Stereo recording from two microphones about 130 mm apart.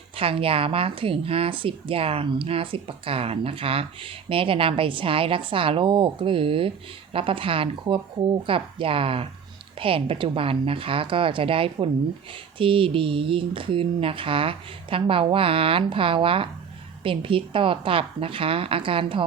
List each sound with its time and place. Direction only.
0.2 s speech: 45° right (ahead or behind)